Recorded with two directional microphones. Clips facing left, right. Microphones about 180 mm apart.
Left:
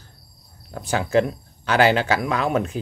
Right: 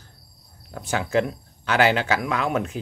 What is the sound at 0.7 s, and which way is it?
Speech, 35° left (ahead or behind).